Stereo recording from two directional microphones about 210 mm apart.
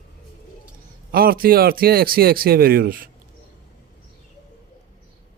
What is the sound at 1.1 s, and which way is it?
Speech, 45° right (ahead or behind).